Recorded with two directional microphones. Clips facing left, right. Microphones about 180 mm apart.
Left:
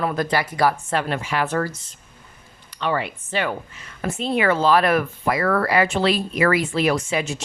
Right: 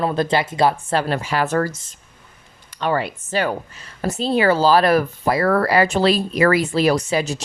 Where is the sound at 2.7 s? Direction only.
45° right (ahead or behind).